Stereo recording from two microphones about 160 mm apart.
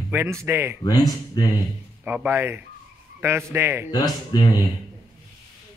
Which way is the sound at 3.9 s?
25° left (ahead or behind).